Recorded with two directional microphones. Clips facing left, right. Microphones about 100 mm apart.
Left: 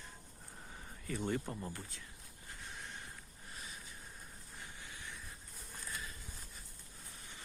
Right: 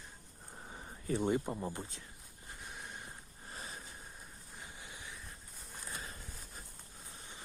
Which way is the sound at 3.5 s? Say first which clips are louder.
Right 4 dB; 40° right (ahead or behind).